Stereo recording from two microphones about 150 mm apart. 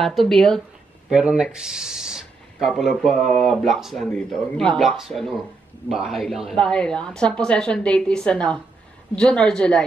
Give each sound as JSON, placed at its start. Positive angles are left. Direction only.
{"t": 0.0, "sound": "speech", "side_deg": 0}